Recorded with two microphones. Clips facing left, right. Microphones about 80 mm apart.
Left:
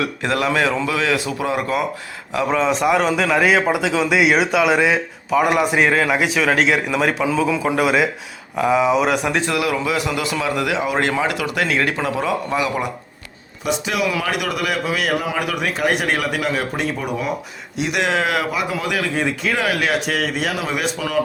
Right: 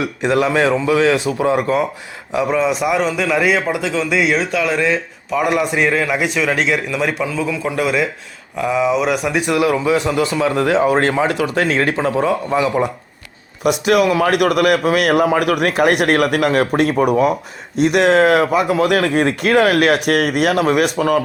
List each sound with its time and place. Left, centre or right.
0.0 s a man's voice: right
2.5 s a man's voice: centre
5.3 s a man's voice: centre
7.4 s a man's voice: centre
9.5 s a man's voice: right
13.7 s speech: right